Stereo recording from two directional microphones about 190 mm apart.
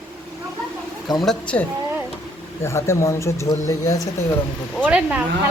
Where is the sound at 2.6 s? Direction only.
15° left (ahead or behind).